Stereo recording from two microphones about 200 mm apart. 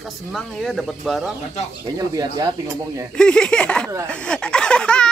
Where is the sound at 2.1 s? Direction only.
20° right (ahead or behind).